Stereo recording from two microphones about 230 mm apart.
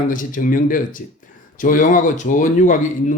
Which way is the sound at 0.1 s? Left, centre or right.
Left.